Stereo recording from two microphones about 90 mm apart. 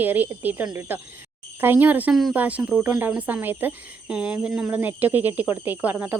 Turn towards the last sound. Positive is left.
turn(degrees=-20)  # may be behind; listen again after turning